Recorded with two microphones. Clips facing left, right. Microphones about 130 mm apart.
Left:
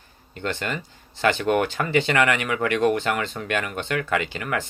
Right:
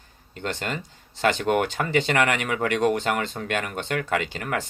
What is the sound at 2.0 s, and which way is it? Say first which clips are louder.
Speech: left 1 dB; 45° right (ahead or behind).